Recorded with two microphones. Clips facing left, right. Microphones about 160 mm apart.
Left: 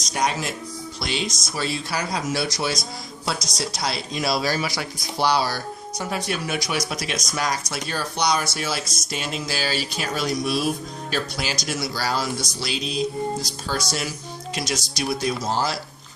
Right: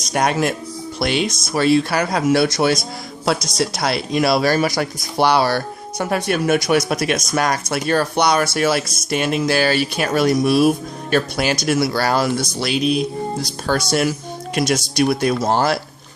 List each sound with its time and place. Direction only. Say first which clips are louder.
0.0 s speech: right 7 dB; 60° right (ahead or behind)